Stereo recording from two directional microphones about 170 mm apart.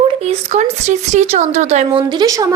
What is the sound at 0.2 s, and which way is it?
Speech, 40° right (ahead or behind).